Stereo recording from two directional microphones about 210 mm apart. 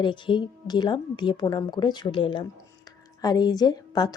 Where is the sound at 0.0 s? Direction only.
20° left (ahead or behind).